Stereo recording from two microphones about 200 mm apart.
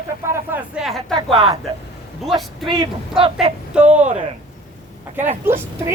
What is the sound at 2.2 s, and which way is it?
Speech, centre (ahead or behind).